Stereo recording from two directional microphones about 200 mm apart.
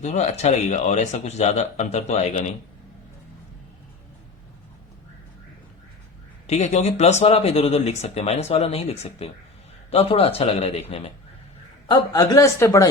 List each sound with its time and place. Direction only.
0.0 s speech: 35° left (ahead or behind)
6.5 s speech: 35° left (ahead or behind)
11.9 s a man's voice: 20° left (ahead or behind)